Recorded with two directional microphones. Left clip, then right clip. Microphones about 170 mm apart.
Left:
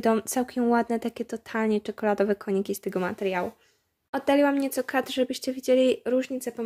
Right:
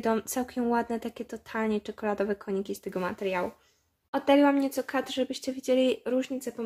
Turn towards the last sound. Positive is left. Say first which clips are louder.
# left 3 dB
turn(degrees=30)  # may be behind; listen again after turning